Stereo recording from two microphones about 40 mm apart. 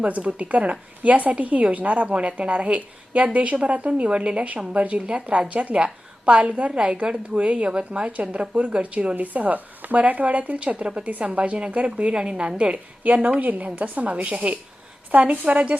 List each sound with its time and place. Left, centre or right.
0.0 s a woman's voice: right
9.1 s a woman's voice: right